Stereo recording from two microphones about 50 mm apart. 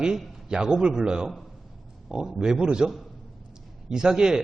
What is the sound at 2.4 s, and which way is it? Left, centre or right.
Speech, centre.